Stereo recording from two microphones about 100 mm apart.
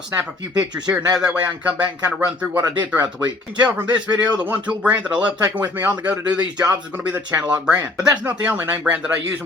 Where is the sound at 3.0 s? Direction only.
45° right (ahead or behind).